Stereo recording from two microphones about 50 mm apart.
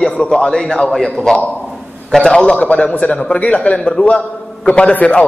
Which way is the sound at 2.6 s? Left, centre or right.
Left.